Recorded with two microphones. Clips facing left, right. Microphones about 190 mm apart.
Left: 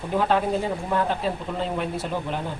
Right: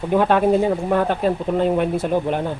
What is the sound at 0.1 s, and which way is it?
Speech, 60° right (ahead or behind).